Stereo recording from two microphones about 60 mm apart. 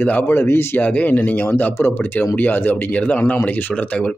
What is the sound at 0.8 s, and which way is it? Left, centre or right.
Speech, left.